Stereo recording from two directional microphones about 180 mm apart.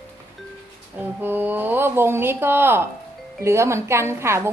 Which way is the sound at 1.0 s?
10° right (ahead or behind).